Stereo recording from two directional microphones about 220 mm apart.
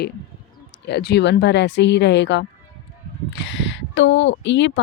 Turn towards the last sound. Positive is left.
turn(degrees=55)  # may be behind; listen again after turning